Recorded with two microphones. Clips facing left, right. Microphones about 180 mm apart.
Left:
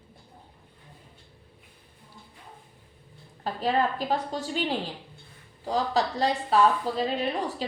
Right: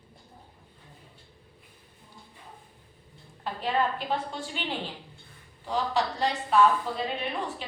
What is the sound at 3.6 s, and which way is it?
A woman's voice, 40° left (ahead or behind).